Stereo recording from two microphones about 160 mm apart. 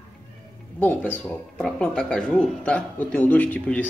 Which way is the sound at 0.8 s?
10° left (ahead or behind).